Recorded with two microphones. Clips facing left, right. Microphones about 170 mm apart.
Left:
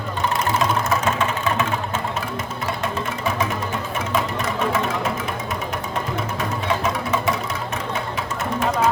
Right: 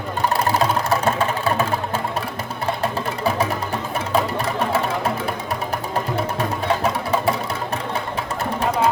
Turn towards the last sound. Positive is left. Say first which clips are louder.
# right 2 dB
turn(degrees=-35)  # may be behind; listen again after turning